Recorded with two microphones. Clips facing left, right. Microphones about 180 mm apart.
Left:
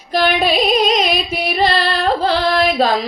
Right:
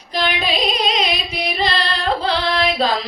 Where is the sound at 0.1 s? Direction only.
50° left (ahead or behind).